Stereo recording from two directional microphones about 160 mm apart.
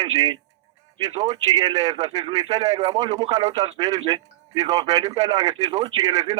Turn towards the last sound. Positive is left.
turn(degrees=-30)  # may be behind; listen again after turning